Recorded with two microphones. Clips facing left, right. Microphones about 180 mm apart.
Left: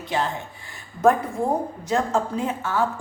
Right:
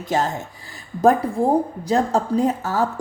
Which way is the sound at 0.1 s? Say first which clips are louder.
Right 4 dB; 45° right (ahead or behind).